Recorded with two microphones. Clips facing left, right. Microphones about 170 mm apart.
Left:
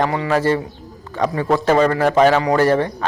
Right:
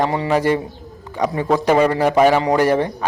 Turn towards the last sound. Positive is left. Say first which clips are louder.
# left 1 dB
turn(degrees=-15)  # may be behind; listen again after turning